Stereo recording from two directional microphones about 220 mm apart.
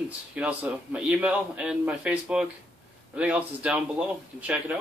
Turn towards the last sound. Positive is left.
turn(degrees=-5)  # may be behind; listen again after turning